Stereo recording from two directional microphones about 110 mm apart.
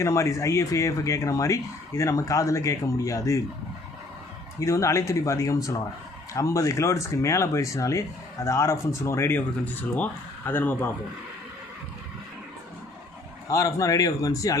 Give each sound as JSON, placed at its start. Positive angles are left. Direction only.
{"t": 0.0, "sound": "speech", "side_deg": 30}
{"t": 4.6, "sound": "speech", "side_deg": 25}
{"t": 13.5, "sound": "a man's voice", "side_deg": 30}